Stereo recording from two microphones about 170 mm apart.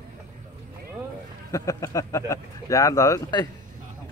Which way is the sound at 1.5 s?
20° left (ahead or behind).